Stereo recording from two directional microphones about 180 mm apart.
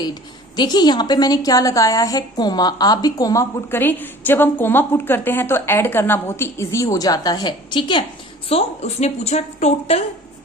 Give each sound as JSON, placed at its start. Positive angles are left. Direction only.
{"t": 0.0, "sound": "a woman's voice", "side_deg": 25}